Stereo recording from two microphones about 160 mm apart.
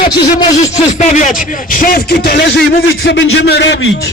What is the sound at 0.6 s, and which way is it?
Speech, 50° left (ahead or behind).